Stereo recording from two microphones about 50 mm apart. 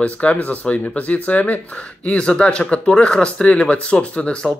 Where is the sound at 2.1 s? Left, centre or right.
Left.